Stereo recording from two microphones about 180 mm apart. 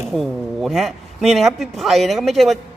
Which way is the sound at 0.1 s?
Centre (ahead or behind).